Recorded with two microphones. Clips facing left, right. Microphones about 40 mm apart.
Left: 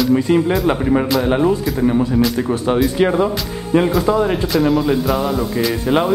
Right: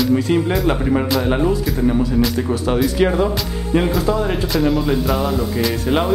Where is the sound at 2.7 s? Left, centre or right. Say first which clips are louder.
Left 2 dB; centre.